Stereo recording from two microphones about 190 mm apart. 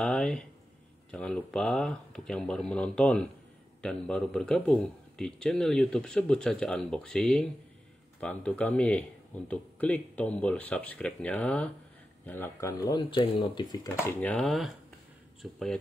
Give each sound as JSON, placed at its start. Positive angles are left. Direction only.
{"t": 0.0, "sound": "speech", "side_deg": 5}
{"t": 12.9, "sound": "speech", "side_deg": 25}
{"t": 14.0, "sound": "speech", "side_deg": 5}